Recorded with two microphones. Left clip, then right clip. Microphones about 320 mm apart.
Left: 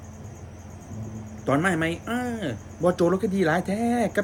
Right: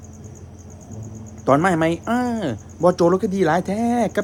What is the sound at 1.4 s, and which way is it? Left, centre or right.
Speech, centre.